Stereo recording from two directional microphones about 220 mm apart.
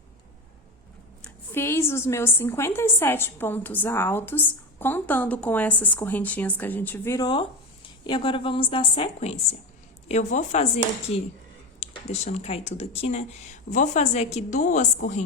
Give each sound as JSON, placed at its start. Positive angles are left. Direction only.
{"t": 1.2, "sound": "a woman's voice", "side_deg": 10}